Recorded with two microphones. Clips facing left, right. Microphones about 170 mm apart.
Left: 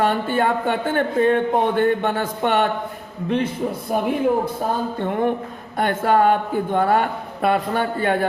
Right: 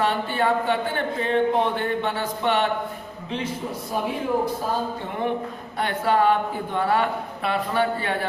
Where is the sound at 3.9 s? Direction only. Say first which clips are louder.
Left 5 dB; 60° left (ahead or behind).